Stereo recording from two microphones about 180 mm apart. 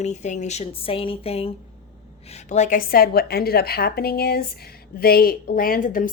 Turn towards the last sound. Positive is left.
turn(degrees=50)  # may be behind; listen again after turning